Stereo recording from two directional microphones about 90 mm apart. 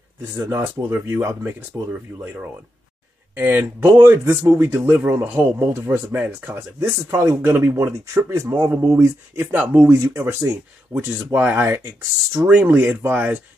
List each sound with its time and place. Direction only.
0.2 s speech: 30° right (ahead or behind)
3.3 s speech: 25° right (ahead or behind)
12.6 s speech: 20° right (ahead or behind)